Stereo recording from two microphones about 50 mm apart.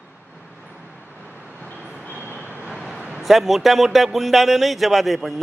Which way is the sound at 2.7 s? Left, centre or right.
Centre.